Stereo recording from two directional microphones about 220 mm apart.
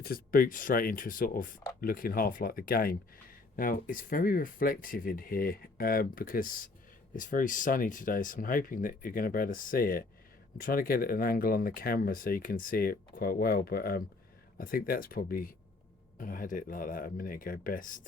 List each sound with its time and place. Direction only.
0.0 s speech: 40° left (ahead or behind)